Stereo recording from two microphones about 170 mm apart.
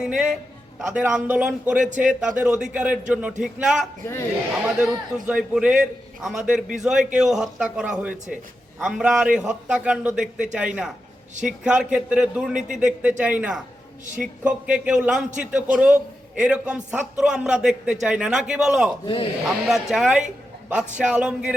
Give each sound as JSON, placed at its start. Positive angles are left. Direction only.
{"t": 0.0, "sound": "a man's voice", "side_deg": -5}
{"t": 4.0, "sound": "a man's voice", "side_deg": 15}
{"t": 4.6, "sound": "a man's voice", "side_deg": -5}
{"t": 19.0, "sound": "speech", "side_deg": 30}
{"t": 19.5, "sound": "a man's voice", "side_deg": 0}